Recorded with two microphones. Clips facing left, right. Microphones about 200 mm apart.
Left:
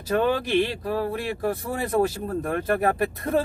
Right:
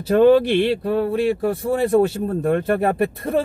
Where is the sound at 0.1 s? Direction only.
30° right (ahead or behind).